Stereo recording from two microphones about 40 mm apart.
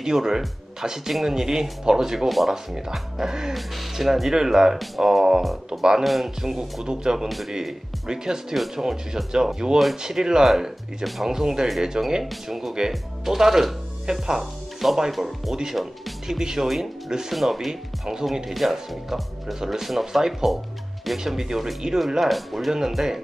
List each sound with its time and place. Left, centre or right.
0.0 s speech: centre
2.2 s speech: centre
2.5 s speech: centre
3.5 s speech: centre
15.0 s speech: centre